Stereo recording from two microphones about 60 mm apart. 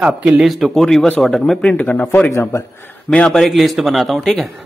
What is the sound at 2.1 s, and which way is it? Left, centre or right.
Speech, left.